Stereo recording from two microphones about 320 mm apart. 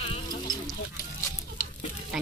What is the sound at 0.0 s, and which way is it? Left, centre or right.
Sheep, centre.